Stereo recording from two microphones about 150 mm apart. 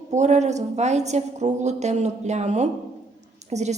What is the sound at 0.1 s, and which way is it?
A woman's voice, 50° right (ahead or behind).